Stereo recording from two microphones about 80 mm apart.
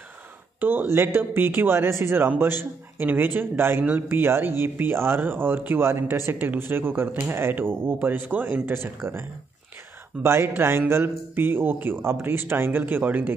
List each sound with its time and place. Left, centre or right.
0.6 s a man's voice: right
10.2 s a man's voice: right